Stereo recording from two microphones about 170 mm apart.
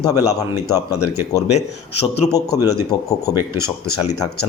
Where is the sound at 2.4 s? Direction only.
20° left (ahead or behind).